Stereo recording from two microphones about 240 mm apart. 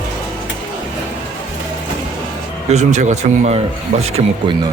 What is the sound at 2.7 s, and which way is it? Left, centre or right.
Speech, right.